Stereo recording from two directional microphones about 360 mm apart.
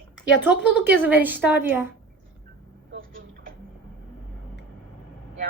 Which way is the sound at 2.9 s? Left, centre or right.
Right.